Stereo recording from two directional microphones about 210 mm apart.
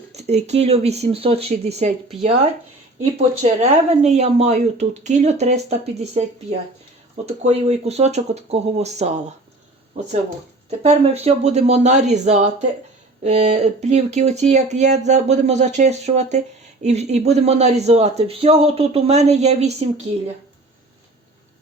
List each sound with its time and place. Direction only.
0.1 s speech: 30° right (ahead or behind)
3.0 s speech: 30° right (ahead or behind)
10.7 s speech: 30° right (ahead or behind)